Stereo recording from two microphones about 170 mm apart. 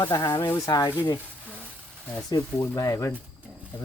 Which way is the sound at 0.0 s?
20° left (ahead or behind).